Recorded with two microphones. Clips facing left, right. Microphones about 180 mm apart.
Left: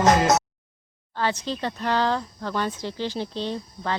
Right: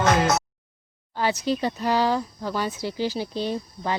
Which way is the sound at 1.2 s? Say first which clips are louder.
Right 3 dB; 10° right (ahead or behind).